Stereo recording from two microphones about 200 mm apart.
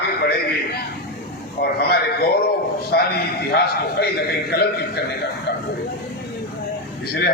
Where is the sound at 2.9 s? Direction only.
55° left (ahead or behind).